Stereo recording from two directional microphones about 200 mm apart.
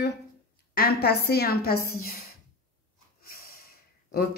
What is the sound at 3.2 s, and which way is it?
Snort, 50° left (ahead or behind).